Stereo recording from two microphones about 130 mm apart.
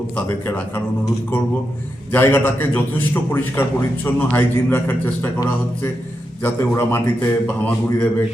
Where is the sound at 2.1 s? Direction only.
15° left (ahead or behind).